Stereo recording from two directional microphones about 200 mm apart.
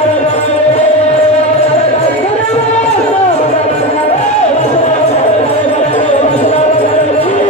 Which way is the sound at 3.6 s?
35° left (ahead or behind).